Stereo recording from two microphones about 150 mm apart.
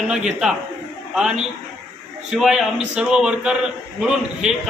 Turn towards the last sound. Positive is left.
turn(degrees=-5)  # may be behind; listen again after turning